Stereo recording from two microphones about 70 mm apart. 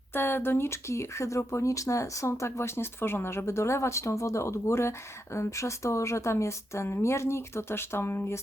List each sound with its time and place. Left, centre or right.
0.1 s speech: left